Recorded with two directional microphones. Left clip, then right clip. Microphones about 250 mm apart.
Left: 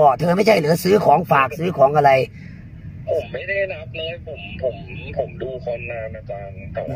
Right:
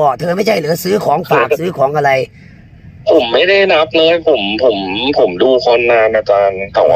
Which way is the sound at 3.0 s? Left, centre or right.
Right.